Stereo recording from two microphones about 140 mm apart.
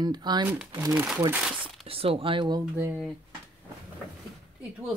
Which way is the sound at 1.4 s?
5° right (ahead or behind).